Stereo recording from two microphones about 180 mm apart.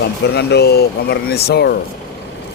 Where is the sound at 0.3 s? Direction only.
65° left (ahead or behind).